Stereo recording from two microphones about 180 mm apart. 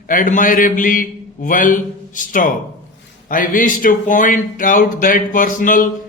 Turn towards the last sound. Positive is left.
turn(degrees=50)  # may be behind; listen again after turning